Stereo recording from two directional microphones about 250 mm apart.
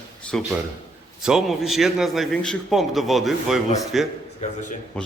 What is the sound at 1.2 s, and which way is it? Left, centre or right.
A man's voice, centre.